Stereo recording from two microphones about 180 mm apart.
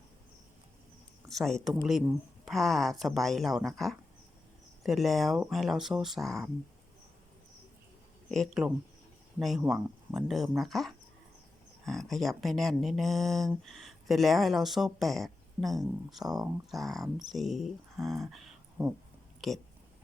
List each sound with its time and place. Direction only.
1.3 s speech: centre (ahead or behind)
8.3 s speech: centre (ahead or behind)
16.2 s speech: 20° right (ahead or behind)
16.7 s speech: centre (ahead or behind)